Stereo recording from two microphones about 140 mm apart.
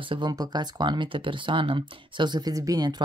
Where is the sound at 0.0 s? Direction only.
35° right (ahead or behind).